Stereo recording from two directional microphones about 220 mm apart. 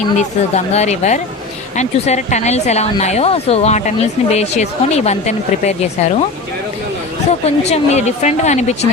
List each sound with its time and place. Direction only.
0.2 s speech: 30° left (ahead or behind)
7.3 s speech: 30° left (ahead or behind)